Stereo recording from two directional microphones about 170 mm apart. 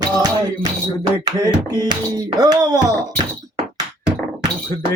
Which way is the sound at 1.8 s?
25° right (ahead or behind).